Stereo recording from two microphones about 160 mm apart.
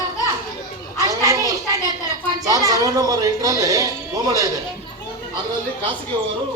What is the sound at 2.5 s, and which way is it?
A child's voice, 20° right (ahead or behind).